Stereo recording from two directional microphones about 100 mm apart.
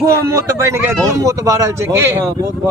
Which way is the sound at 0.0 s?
30° right (ahead or behind).